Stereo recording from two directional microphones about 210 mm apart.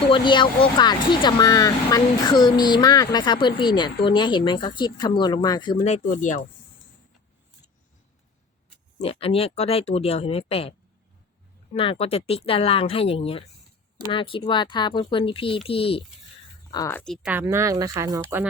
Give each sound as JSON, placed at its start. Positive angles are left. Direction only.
{"t": 0.1, "sound": "speech", "side_deg": 25}
{"t": 9.0, "sound": "speech", "side_deg": 30}
{"t": 16.7, "sound": "speech", "side_deg": 15}
{"t": 17.0, "sound": "speech", "side_deg": 0}
{"t": 17.3, "sound": "speech", "side_deg": -15}